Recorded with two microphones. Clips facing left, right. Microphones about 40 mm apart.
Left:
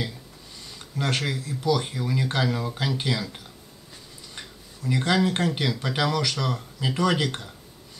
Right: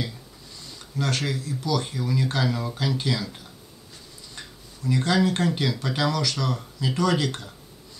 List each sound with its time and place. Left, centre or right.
0.9 s speech: left
4.4 s speech: left